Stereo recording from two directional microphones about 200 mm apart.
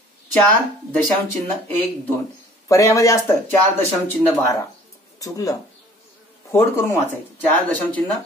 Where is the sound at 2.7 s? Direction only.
15° left (ahead or behind).